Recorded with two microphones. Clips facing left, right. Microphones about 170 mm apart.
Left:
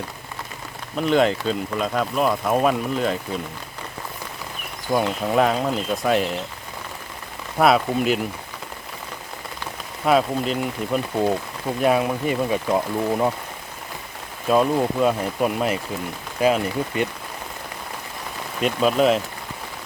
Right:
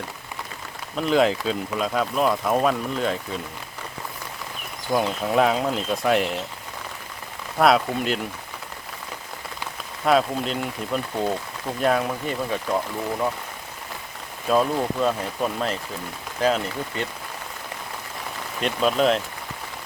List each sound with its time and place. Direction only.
0.9 s speech: centre (ahead or behind)
4.9 s speech: centre (ahead or behind)
7.6 s speech: 5° left (ahead or behind)
10.1 s speech: 5° left (ahead or behind); by 13.3 s 20° left (ahead or behind)
14.4 s speech: 5° left (ahead or behind)
18.6 s speech: 5° left (ahead or behind)